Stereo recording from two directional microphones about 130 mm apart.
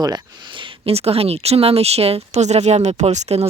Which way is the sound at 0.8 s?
50° right (ahead or behind).